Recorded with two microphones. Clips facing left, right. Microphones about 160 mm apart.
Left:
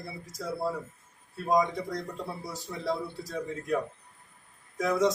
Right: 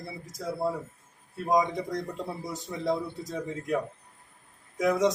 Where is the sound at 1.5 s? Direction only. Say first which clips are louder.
Right 1 dB; 20° right (ahead or behind).